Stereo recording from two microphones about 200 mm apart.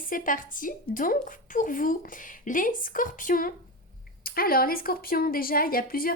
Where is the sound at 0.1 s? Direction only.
45° left (ahead or behind).